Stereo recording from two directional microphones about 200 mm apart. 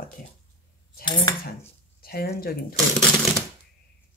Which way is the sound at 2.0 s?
50° left (ahead or behind).